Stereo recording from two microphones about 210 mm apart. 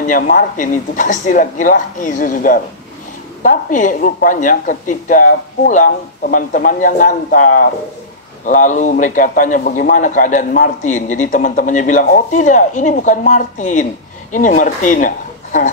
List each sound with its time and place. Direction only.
0.0 s a man's voice: 40° left (ahead or behind)